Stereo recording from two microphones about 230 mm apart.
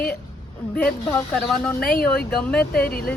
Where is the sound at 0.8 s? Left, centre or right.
Centre.